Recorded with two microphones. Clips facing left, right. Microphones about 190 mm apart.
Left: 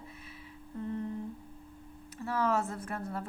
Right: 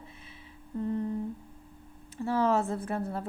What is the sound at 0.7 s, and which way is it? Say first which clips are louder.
Humming: right 6 dB; 30° right (ahead or behind).